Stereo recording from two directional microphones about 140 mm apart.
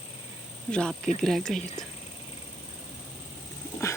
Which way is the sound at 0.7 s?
5° left (ahead or behind).